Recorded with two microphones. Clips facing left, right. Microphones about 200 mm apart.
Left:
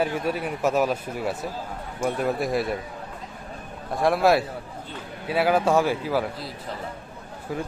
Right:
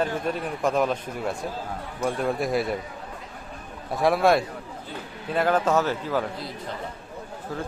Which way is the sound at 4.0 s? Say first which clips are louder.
Even; centre (ahead or behind).